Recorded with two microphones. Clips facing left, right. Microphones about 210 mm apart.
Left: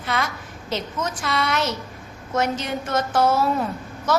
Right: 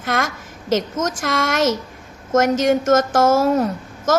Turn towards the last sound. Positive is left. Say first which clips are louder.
# right 5 dB
turn(degrees=-45)  # may be behind; listen again after turning